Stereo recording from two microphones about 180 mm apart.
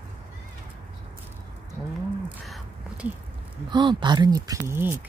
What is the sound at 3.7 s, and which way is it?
Speech, 25° right (ahead or behind).